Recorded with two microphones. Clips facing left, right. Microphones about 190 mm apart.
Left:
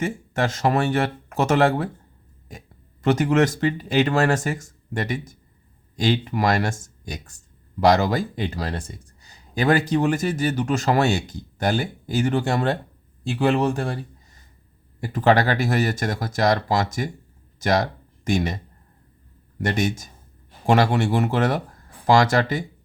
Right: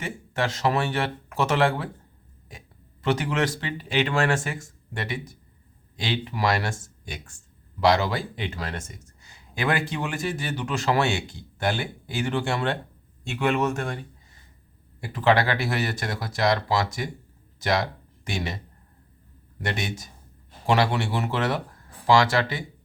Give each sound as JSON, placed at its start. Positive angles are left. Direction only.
{"t": 0.0, "sound": "speech", "side_deg": 45}
{"t": 15.0, "sound": "speech", "side_deg": 45}
{"t": 19.6, "sound": "speech", "side_deg": 45}